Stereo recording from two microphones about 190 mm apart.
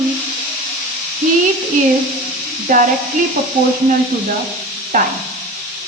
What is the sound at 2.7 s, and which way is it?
Speech, 45° right (ahead or behind).